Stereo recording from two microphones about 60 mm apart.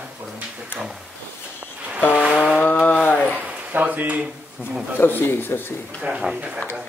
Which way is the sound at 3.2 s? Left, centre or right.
Right.